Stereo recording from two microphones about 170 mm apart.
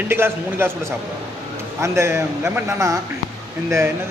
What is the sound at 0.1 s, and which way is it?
A man's voice, 15° right (ahead or behind).